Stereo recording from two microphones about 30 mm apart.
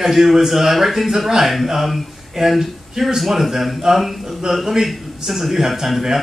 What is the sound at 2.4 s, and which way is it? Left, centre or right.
A man's voice, centre.